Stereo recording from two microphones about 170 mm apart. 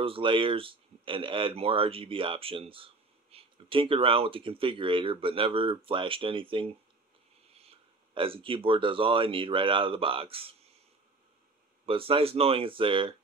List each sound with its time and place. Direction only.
0.0 s speech: 30° right (ahead or behind)
11.8 s speech: 35° right (ahead or behind)